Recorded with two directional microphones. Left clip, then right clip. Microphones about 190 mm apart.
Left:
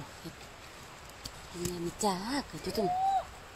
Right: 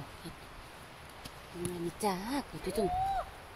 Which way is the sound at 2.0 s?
10° left (ahead or behind).